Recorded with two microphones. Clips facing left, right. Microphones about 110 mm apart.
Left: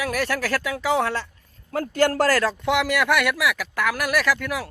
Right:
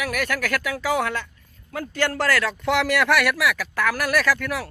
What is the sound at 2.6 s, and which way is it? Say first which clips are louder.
Speech: right 1 dB; 15° left (ahead or behind).